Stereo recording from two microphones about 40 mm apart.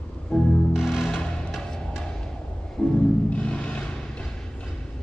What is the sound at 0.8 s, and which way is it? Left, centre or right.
Music, centre.